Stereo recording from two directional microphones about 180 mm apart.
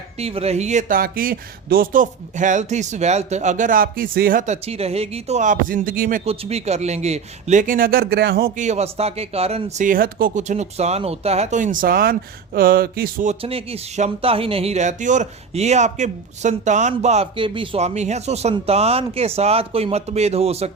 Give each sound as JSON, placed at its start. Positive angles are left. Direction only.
{"t": 0.2, "sound": "speech", "side_deg": -35}
{"t": 6.2, "sound": "a man's voice", "side_deg": -35}
{"t": 13.4, "sound": "a man's voice", "side_deg": -30}